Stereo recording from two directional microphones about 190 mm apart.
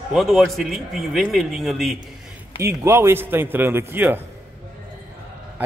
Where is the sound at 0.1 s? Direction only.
Centre (ahead or behind).